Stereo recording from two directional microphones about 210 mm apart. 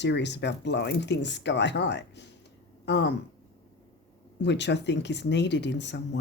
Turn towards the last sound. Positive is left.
turn(degrees=55)  # may be behind; listen again after turning